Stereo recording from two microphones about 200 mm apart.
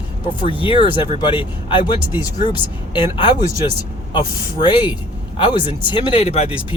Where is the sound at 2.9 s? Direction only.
25° left (ahead or behind).